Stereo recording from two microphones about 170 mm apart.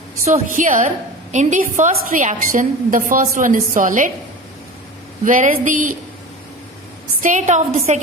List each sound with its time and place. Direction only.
0.3 s a woman's voice: 45° right (ahead or behind)
5.2 s a woman's voice: 50° right (ahead or behind)
7.2 s a woman's voice: 50° right (ahead or behind)